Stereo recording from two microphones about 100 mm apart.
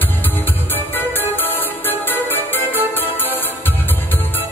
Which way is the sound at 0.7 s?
20° left (ahead or behind).